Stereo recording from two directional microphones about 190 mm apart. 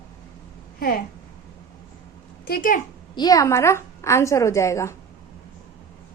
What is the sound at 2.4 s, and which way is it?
Speech, 50° left (ahead or behind).